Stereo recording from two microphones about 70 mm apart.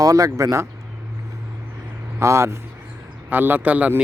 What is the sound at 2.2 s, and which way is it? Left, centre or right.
Speech, right.